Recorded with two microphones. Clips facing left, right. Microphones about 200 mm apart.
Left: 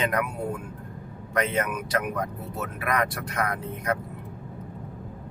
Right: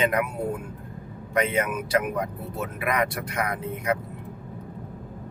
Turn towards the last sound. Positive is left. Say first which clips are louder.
# right 2 dB
turn(degrees=-10)  # may be behind; listen again after turning